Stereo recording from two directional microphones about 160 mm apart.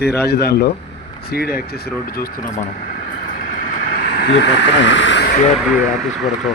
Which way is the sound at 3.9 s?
75° left (ahead or behind).